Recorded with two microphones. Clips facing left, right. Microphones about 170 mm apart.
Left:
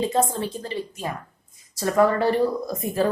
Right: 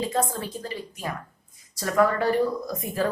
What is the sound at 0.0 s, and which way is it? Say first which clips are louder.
Speech: left 4 dB; 25° left (ahead or behind).